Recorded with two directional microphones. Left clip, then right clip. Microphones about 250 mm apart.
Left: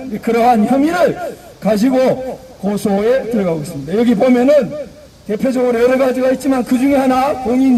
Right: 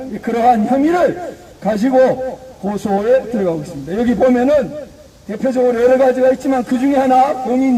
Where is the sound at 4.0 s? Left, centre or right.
Left.